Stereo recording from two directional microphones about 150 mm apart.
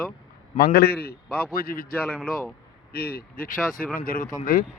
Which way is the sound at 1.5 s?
75° left (ahead or behind).